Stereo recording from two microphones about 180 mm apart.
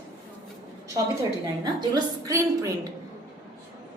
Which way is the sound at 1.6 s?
20° right (ahead or behind).